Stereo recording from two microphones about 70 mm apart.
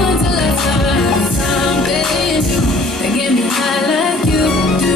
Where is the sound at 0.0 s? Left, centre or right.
Centre.